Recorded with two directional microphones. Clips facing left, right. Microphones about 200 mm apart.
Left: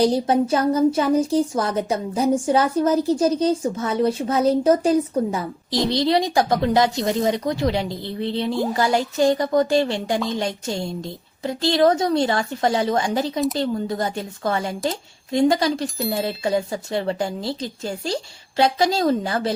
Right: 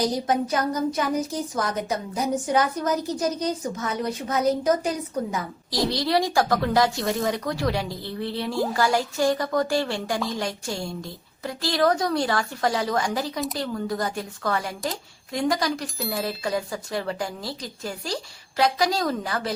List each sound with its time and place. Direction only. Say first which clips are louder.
0.0 s a woman's voice: left 6 dB; 30° left (ahead or behind)